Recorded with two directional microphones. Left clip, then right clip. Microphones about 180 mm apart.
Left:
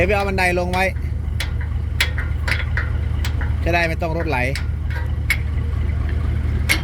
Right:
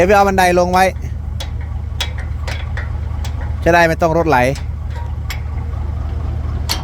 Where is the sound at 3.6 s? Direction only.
40° right (ahead or behind).